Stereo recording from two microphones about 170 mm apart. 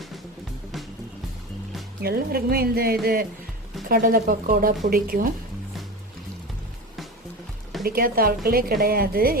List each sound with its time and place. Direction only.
2.0 s a woman's voice: 65° right (ahead or behind)
7.9 s a woman's voice: 60° right (ahead or behind)